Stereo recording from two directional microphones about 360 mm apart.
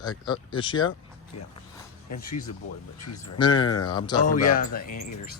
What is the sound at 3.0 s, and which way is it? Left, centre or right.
Speech, left.